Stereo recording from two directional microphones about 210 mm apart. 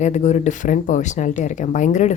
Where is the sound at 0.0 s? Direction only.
35° left (ahead or behind).